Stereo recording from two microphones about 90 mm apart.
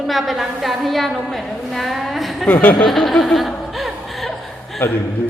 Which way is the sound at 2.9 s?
Centre (ahead or behind).